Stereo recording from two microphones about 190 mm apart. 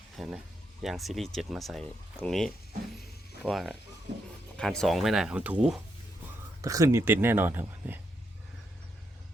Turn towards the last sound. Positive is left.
turn(degrees=-10)  # may be behind; listen again after turning